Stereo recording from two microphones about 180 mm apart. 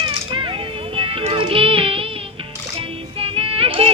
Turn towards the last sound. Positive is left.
turn(degrees=-30)  # may be behind; listen again after turning